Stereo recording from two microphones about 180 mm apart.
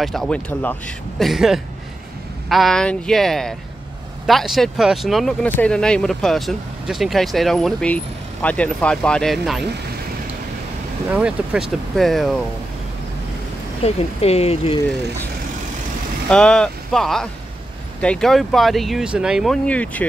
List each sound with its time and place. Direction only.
0.0 s speech: centre (ahead or behind)
11.1 s speech: 5° right (ahead or behind)
13.8 s speech: 35° left (ahead or behind)
16.3 s speech: 5° left (ahead or behind)